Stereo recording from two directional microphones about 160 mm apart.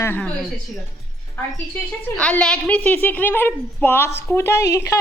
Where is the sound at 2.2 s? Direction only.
5° left (ahead or behind).